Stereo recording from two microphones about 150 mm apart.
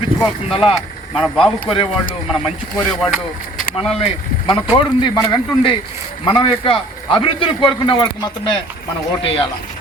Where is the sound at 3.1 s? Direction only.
Centre (ahead or behind).